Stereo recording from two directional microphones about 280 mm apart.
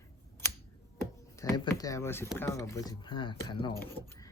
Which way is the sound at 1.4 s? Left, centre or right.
Centre.